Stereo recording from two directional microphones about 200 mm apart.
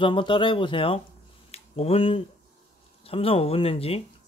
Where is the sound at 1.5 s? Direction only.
30° left (ahead or behind).